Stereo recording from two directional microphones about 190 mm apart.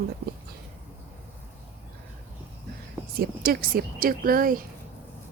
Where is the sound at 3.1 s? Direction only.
50° right (ahead or behind).